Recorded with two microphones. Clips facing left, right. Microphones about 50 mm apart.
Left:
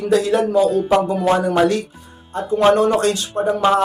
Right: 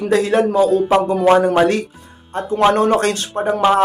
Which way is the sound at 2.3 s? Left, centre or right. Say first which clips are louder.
Even; right.